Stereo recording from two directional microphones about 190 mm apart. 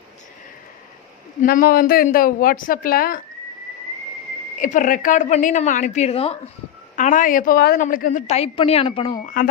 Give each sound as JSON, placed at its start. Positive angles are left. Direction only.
{"t": 1.4, "sound": "a woman's voice", "side_deg": 45}
{"t": 4.6, "sound": "a woman's voice", "side_deg": 45}
{"t": 6.9, "sound": "a woman's voice", "side_deg": 45}
{"t": 9.4, "sound": "a woman's voice", "side_deg": 45}